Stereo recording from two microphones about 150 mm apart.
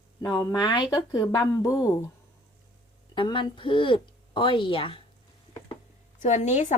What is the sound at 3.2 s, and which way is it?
A woman's voice, 35° left (ahead or behind).